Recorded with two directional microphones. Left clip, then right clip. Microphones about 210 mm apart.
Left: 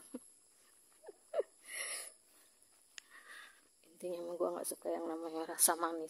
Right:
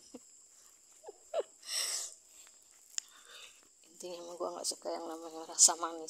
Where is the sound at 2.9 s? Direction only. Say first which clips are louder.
Right 7 dB; 40° left (ahead or behind).